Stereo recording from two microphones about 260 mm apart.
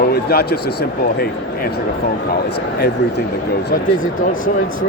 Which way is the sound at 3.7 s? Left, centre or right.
Left.